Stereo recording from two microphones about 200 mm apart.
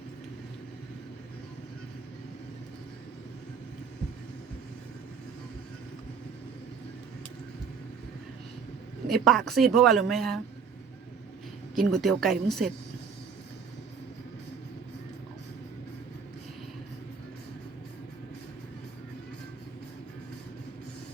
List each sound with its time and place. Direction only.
9.0 s speech: centre (ahead or behind)
11.7 s speech: centre (ahead or behind)